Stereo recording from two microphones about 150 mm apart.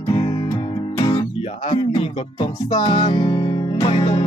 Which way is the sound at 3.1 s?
30° left (ahead or behind).